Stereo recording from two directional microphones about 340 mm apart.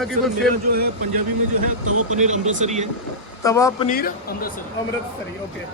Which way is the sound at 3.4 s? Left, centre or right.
Centre.